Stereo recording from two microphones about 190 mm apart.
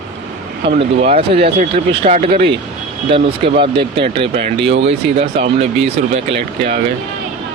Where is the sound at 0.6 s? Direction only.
25° right (ahead or behind).